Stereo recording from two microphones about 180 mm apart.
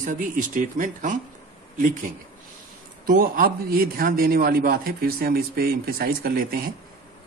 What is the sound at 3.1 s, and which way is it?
A man's voice, 50° right (ahead or behind).